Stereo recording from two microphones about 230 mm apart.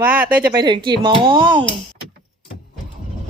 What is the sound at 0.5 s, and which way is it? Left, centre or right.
Speech, centre.